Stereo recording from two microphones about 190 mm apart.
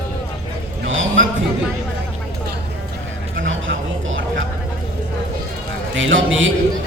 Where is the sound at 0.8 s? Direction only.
90° right.